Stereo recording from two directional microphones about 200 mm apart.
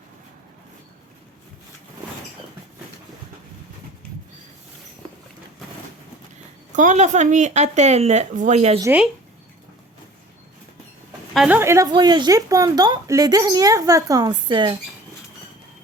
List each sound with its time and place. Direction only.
6.7 s a woman's voice: 35° right (ahead or behind)
8.8 s speech: 10° right (ahead or behind)
11.3 s speech: 10° right (ahead or behind)